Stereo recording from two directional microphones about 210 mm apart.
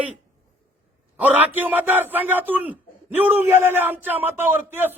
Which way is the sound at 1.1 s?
10° right (ahead or behind).